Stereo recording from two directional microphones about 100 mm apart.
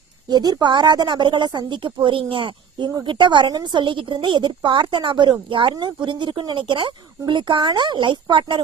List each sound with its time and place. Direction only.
0.3 s speech: 45° right (ahead or behind)